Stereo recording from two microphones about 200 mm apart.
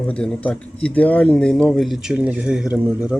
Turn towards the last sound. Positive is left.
turn(degrees=-5)  # may be behind; listen again after turning